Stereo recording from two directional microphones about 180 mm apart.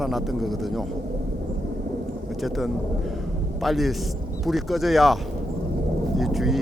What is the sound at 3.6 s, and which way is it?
Speech, centre (ahead or behind).